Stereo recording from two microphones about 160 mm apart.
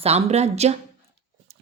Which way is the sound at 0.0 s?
40° right (ahead or behind).